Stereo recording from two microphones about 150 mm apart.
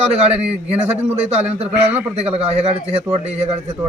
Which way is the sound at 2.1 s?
45° right (ahead or behind).